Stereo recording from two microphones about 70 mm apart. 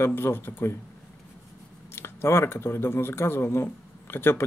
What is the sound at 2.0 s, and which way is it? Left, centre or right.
Speech, left.